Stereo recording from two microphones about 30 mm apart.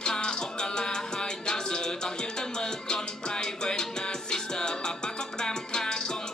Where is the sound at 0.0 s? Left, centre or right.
Left.